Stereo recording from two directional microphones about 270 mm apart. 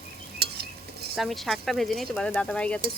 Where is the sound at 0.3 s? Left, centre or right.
Right.